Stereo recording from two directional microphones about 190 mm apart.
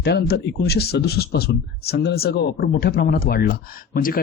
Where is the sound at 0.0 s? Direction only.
60° left (ahead or behind).